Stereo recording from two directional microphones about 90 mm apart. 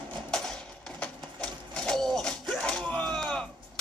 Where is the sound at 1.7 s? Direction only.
5° left (ahead or behind).